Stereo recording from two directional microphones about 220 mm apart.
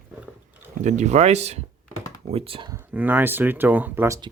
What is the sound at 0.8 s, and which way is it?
Speech, 35° right (ahead or behind).